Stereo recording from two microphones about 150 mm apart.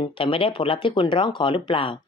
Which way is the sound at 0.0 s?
35° left (ahead or behind).